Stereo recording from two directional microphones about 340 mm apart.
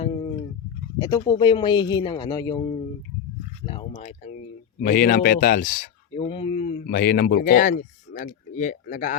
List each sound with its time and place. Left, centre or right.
0.0 s fowl: centre
0.9 s speech: centre